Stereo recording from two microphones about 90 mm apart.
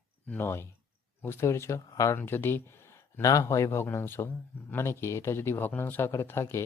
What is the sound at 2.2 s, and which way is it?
Speech, 25° left (ahead or behind).